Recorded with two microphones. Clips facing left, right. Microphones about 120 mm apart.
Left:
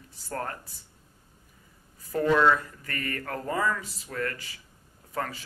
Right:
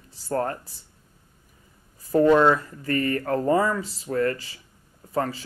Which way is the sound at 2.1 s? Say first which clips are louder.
Right 5 dB; 30° right (ahead or behind).